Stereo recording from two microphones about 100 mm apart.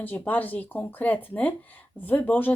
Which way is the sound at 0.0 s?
15° left (ahead or behind).